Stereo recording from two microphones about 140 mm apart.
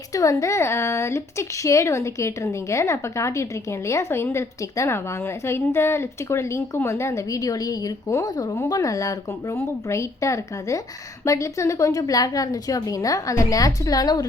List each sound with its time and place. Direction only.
0.1 s a woman's voice: 25° left (ahead or behind)